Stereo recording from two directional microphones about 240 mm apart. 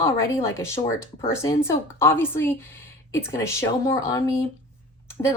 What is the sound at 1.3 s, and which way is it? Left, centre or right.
A woman's voice, centre.